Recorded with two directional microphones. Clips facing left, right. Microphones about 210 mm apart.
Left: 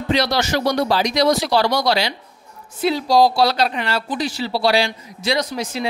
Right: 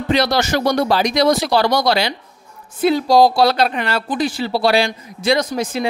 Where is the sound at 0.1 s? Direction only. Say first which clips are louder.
Right 2 dB; 50° right (ahead or behind).